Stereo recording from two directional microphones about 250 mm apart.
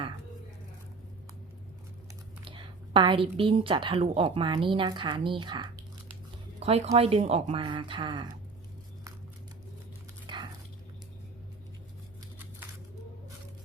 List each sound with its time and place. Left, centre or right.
2.4 s a woman's voice: right
10.3 s dog: centre